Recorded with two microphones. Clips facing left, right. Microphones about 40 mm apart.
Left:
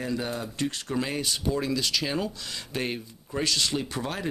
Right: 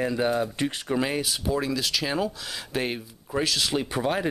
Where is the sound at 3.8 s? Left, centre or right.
Centre.